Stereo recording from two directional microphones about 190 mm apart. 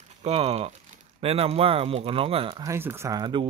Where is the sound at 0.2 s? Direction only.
30° right (ahead or behind).